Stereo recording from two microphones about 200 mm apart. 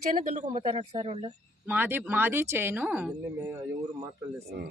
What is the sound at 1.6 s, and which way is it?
Speech, 10° right (ahead or behind).